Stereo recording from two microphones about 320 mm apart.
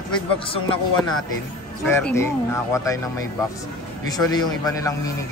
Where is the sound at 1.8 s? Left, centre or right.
Centre.